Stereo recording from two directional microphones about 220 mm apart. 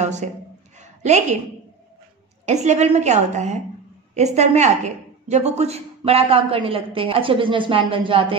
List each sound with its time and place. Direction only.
0.0 s speech: 30° right (ahead or behind)
0.7 s a sound: 30° right (ahead or behind)
2.4 s a woman's voice: 30° right (ahead or behind)